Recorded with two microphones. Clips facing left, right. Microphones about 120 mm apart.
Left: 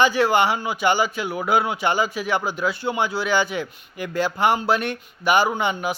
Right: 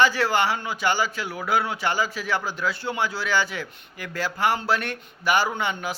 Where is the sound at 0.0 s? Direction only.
15° left (ahead or behind).